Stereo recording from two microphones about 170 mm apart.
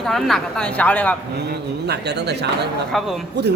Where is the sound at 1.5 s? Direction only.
75° right (ahead or behind).